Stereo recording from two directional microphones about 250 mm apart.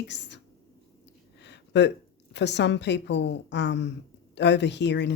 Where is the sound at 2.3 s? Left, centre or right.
Left.